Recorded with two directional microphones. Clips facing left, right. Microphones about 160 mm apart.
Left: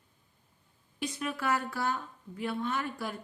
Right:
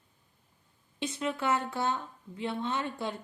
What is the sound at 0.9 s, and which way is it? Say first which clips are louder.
Speech: right 2 dB; 25° right (ahead or behind).